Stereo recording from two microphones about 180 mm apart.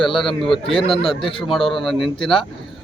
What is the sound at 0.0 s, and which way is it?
Speech, centre (ahead or behind).